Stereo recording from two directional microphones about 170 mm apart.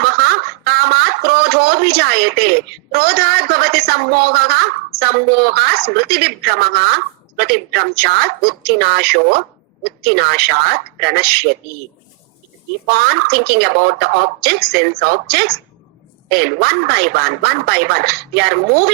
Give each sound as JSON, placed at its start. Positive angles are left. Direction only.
{"t": 0.0, "sound": "speech", "side_deg": -65}
{"t": 12.9, "sound": "speech", "side_deg": -65}